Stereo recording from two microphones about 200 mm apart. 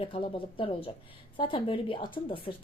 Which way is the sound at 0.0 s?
25° left (ahead or behind).